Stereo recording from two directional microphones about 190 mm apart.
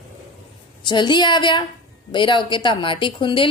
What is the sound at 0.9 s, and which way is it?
A woman's voice, 25° left (ahead or behind).